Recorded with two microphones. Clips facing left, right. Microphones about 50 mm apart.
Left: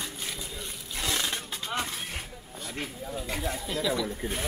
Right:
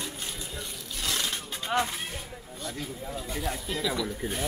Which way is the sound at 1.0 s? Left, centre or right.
Left.